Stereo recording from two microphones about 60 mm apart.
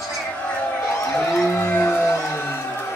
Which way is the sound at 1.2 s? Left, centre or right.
Centre.